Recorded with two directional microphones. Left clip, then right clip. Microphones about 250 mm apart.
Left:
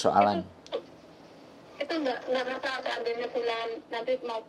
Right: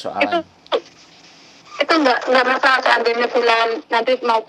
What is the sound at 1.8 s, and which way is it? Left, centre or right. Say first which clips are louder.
Speech: right 16 dB; right.